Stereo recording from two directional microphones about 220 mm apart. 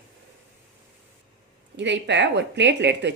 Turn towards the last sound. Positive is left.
turn(degrees=-50)  # may be behind; listen again after turning